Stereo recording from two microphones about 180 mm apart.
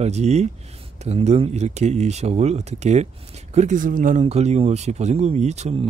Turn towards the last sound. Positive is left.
turn(degrees=-40)  # may be behind; listen again after turning